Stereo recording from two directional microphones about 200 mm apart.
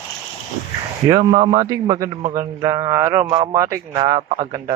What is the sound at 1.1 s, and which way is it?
Speech, 20° right (ahead or behind).